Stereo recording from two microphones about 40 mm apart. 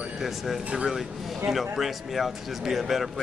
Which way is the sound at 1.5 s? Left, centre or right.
Centre.